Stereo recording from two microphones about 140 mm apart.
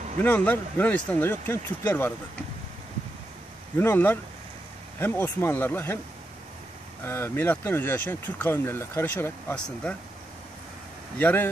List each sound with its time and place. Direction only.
0.2 s speech: 10° left (ahead or behind)
3.7 s speech: 15° left (ahead or behind)
7.0 s speech: 15° left (ahead or behind)
11.1 s speech: 10° left (ahead or behind)